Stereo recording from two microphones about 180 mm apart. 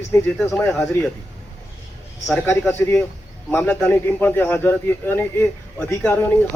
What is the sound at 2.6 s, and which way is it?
A man's voice, 10° left (ahead or behind).